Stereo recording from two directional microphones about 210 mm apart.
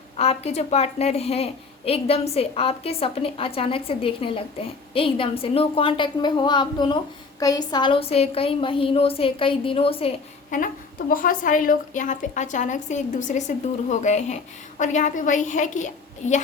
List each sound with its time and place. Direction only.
0.2 s a woman's voice: 30° left (ahead or behind)